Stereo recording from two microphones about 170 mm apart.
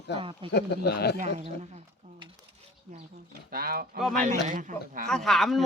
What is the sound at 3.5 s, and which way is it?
Speech, 60° right (ahead or behind).